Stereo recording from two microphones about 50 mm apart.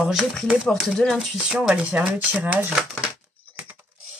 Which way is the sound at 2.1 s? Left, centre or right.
Right.